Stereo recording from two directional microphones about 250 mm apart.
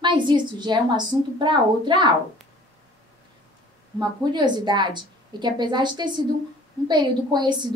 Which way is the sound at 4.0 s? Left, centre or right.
Centre.